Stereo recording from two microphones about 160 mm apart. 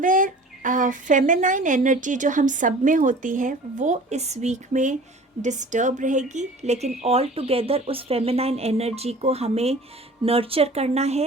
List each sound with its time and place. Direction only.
0.0 s speech: 55° right (ahead or behind)